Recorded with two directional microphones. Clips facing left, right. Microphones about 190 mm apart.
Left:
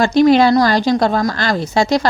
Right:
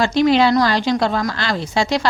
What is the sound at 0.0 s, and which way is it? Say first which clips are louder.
A woman's voice: left 4 dB; 45° left (ahead or behind).